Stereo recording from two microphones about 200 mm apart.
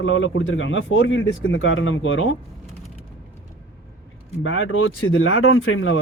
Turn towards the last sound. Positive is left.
turn(degrees=80)